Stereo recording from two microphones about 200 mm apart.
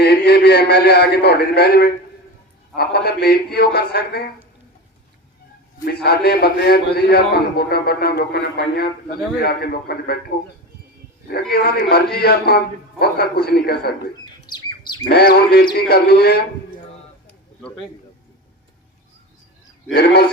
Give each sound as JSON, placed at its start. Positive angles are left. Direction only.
{"t": 0.0, "sound": "a man's voice", "side_deg": 55}
{"t": 5.8, "sound": "a man's voice", "side_deg": 55}
{"t": 14.4, "sound": "chirp", "side_deg": 20}
{"t": 15.0, "sound": "a man's voice", "side_deg": 50}
{"t": 17.6, "sound": "a man's voice", "side_deg": 5}
{"t": 19.9, "sound": "a man's voice", "side_deg": 55}